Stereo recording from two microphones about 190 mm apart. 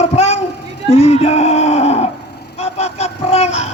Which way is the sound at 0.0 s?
35° left (ahead or behind).